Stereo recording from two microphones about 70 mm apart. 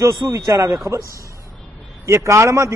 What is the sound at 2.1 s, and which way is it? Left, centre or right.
Speech, right.